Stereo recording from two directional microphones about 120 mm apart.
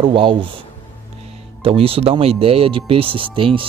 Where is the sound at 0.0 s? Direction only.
45° right (ahead or behind).